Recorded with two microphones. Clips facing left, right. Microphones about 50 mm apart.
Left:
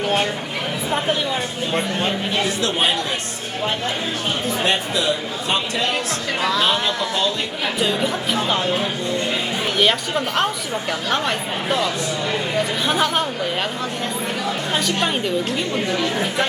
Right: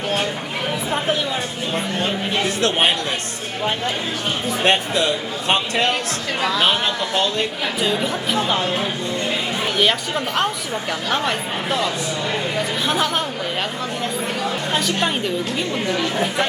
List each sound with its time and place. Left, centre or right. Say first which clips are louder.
0.9 s a woman's voice: left 1 dB; centre
2.6 s speech: right 5 dB; right
4.6 s speech: right 4 dB; right
7.8 s a woman's voice: even; centre
9.7 s a woman's voice: left 1 dB; centre
14.7 s a woman's voice: even; centre